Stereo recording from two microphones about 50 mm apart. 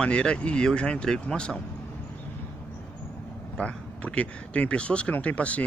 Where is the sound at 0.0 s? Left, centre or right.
Centre.